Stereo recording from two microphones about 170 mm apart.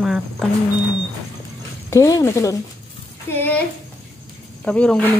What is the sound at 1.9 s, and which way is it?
Speech, 15° left (ahead or behind).